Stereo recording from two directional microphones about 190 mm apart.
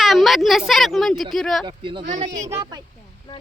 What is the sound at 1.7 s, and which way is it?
Speech, 25° right (ahead or behind).